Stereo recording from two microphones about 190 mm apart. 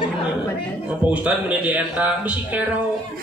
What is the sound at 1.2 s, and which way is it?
Speech, 10° right (ahead or behind).